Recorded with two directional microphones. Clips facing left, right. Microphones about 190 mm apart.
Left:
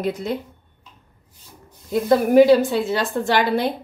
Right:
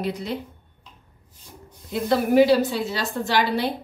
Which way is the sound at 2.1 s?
50° left (ahead or behind).